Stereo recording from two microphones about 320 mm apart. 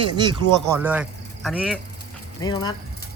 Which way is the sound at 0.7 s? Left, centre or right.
Centre.